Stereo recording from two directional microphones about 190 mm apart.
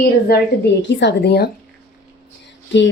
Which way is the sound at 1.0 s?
60° left (ahead or behind).